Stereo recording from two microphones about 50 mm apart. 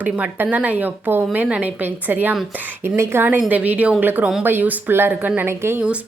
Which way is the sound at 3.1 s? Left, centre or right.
Right.